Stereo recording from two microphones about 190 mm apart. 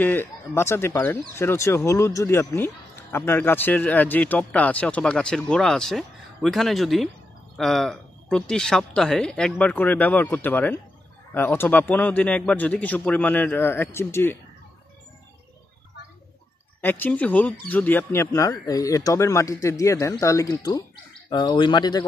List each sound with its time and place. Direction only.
0.0 s speech: 10° left (ahead or behind)
16.8 s speech: 10° left (ahead or behind)